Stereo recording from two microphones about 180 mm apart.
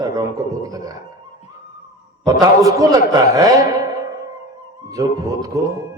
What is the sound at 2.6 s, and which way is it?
Speech, 20° right (ahead or behind).